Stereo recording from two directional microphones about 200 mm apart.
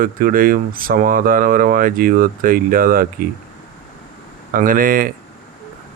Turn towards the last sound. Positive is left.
turn(degrees=-45)  # may be behind; listen again after turning